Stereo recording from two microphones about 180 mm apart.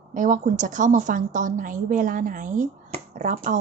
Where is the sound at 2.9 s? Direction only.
40° right (ahead or behind).